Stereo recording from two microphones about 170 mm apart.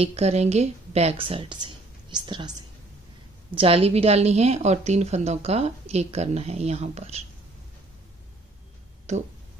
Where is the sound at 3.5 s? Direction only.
35° right (ahead or behind).